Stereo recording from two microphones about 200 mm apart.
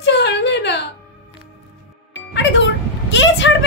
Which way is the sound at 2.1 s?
65° left (ahead or behind).